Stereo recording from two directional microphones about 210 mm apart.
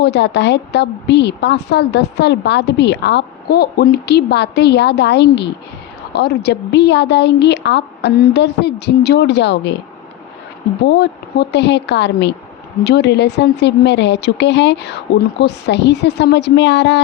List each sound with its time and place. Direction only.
0.0 s a woman's voice: 55° left (ahead or behind)
10.8 s speech: 50° left (ahead or behind)